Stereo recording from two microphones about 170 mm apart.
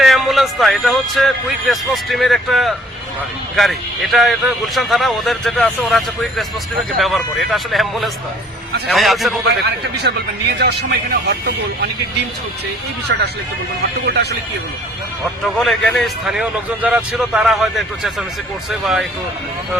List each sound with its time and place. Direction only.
0.0 s a man's voice: centre (ahead or behind)
9.6 s speech: 80° right
13.1 s speech: 75° right (ahead or behind)
15.5 s a man's voice: centre (ahead or behind)